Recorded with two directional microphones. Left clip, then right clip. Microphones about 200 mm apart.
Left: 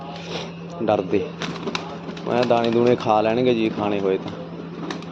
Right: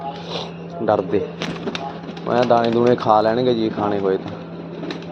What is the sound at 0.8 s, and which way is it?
Speech, 5° left (ahead or behind).